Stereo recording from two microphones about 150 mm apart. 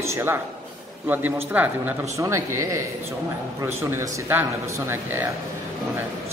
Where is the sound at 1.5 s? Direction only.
10° right (ahead or behind).